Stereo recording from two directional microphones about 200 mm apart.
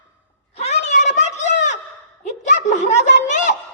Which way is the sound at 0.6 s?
35° left (ahead or behind).